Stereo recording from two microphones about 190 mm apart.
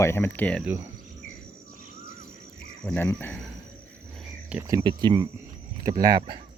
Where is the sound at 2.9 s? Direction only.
10° left (ahead or behind).